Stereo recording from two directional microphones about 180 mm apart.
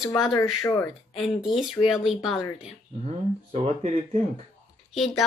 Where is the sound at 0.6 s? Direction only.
15° left (ahead or behind).